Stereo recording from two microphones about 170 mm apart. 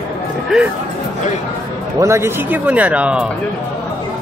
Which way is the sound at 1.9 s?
15° right (ahead or behind).